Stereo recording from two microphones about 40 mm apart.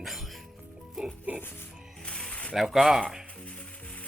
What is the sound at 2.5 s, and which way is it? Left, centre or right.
Speech, centre.